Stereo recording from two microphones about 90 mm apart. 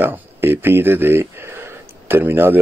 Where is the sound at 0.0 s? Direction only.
25° right (ahead or behind).